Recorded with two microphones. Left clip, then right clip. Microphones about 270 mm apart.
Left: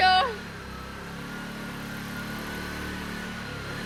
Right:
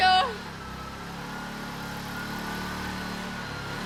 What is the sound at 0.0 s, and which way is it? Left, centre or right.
Vehicle, centre.